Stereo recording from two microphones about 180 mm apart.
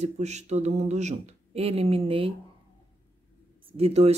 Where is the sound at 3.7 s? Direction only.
35° right (ahead or behind).